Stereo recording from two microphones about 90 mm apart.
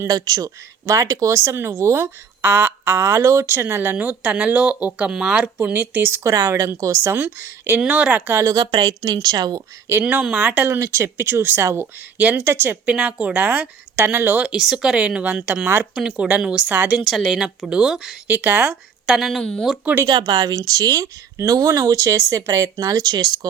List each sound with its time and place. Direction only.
0.1 s speech: 45° right (ahead or behind); by 6.3 s 25° right (ahead or behind)
6.3 s speech: 35° right (ahead or behind)
7.8 s speech: 15° right (ahead or behind)
8.6 s a woman's voice: 55° right (ahead or behind)
10.0 s speech: 15° right (ahead or behind)
10.8 s speech: 35° right (ahead or behind)
12.9 s speech: 10° right (ahead or behind)
14.5 s speech: 5° right (ahead or behind)
17.0 s speech: centre (ahead or behind)
18.3 s speech: 20° right (ahead or behind); by 19.6 s 10° left (ahead or behind)
20.1 s a woman's voice: 50° right (ahead or behind)